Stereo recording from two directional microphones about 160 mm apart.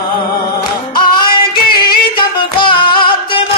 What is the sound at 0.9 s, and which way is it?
Music, 30° left (ahead or behind).